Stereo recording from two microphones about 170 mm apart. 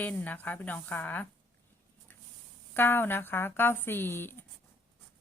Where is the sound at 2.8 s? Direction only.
15° left (ahead or behind).